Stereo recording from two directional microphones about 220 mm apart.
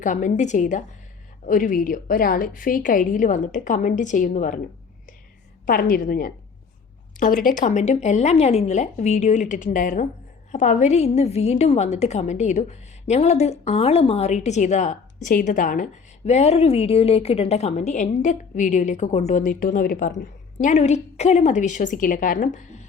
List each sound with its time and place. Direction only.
0.0 s a woman's voice: 35° left (ahead or behind)
5.6 s a woman's voice: 40° left (ahead or behind)
7.4 s a woman's voice: 35° left (ahead or behind)